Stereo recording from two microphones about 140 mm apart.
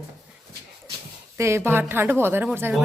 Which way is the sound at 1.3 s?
20° right (ahead or behind).